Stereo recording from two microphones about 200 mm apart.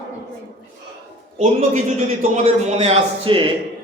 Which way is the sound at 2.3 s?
35° right (ahead or behind).